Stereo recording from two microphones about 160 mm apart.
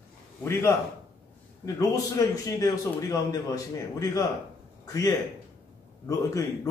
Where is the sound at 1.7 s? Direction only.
20° left (ahead or behind).